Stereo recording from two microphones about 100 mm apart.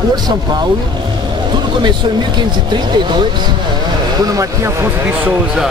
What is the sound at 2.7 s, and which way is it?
Speech, 50° right (ahead or behind).